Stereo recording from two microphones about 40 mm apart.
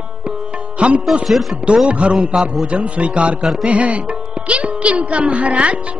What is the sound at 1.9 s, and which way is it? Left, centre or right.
A woman's voice, right.